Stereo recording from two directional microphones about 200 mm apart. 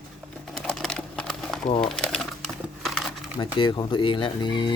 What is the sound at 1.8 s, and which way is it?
Bird, 5° left (ahead or behind).